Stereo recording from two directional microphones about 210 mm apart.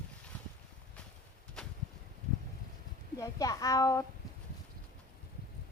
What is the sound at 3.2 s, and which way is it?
Speech, 15° left (ahead or behind).